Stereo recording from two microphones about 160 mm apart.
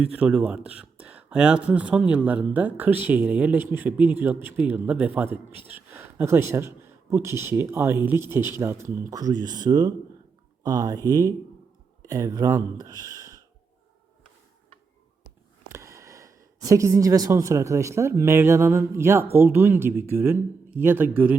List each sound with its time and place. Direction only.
0.0 s speech: 10° right (ahead or behind)
15.7 s a woman's voice: 20° right (ahead or behind)